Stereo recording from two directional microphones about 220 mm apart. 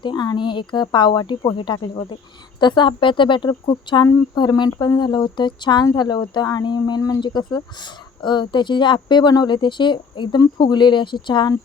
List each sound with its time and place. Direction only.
0.0 s speech: 20° left (ahead or behind)